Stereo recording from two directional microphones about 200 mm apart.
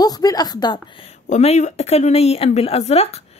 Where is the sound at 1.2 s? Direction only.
35° left (ahead or behind).